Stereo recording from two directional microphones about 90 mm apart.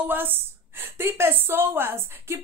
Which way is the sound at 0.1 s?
20° right (ahead or behind).